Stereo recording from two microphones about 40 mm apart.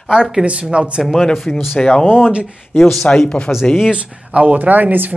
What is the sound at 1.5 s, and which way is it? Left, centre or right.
Speech, centre.